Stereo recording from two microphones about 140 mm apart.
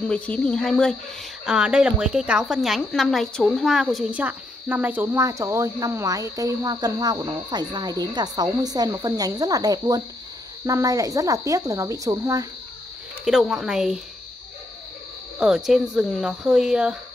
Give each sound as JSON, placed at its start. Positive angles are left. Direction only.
{"t": 0.1, "sound": "speech", "side_deg": 5}
{"t": 1.4, "sound": "a woman's voice", "side_deg": -5}
{"t": 13.2, "sound": "speech", "side_deg": 0}
{"t": 15.3, "sound": "speech", "side_deg": -5}